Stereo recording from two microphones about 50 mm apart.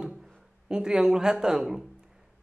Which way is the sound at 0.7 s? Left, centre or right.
Centre.